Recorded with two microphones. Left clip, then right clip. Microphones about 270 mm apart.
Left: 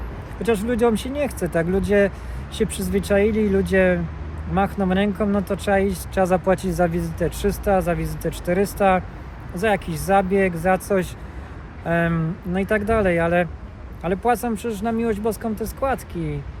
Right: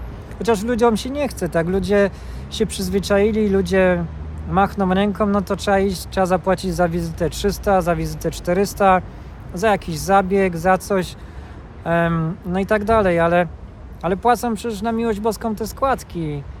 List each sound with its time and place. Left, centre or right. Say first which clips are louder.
0.7 s speech: right 3 dB; centre